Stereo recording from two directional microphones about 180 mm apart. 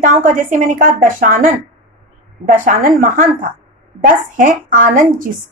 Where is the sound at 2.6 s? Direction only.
50° right (ahead or behind).